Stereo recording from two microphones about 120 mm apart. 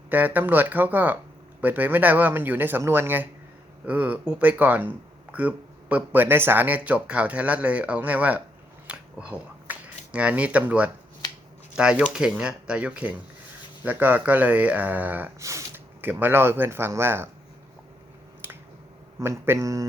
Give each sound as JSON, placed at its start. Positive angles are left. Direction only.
{"t": 0.1, "sound": "speech", "side_deg": -15}
{"t": 8.9, "sound": "a sound", "side_deg": -10}
{"t": 11.8, "sound": "speech", "side_deg": -5}
{"t": 15.4, "sound": "speech", "side_deg": -25}
{"t": 18.4, "sound": "finger snapping", "side_deg": -15}
{"t": 19.2, "sound": "speech", "side_deg": -20}